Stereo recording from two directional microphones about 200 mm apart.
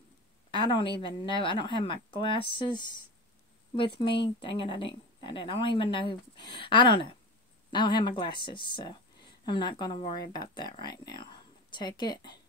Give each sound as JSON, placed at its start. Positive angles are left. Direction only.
{"t": 0.5, "sound": "speech", "side_deg": 25}